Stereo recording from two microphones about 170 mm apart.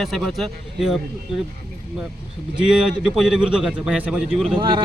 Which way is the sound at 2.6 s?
5° right (ahead or behind).